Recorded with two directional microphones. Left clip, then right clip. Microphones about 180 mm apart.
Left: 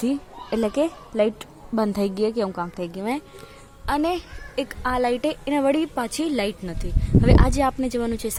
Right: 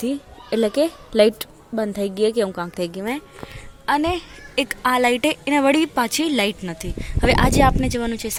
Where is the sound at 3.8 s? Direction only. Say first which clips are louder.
Right 3 dB; centre (ahead or behind).